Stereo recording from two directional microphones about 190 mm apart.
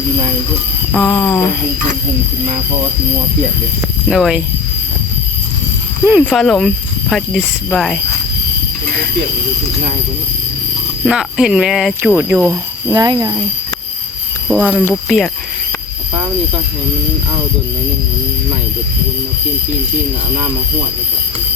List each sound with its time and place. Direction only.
0.9 s speech: 5° left (ahead or behind)
4.1 s speech: 5° right (ahead or behind)
6.1 s speech: 5° right (ahead or behind)
11.0 s speech: 5° right (ahead or behind)
12.9 s speech: 20° right (ahead or behind)
14.4 s speech: 5° right (ahead or behind)